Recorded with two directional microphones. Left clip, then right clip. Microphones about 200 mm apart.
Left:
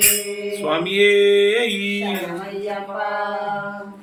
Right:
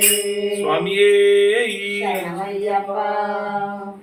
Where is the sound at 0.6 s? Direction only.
25° left (ahead or behind).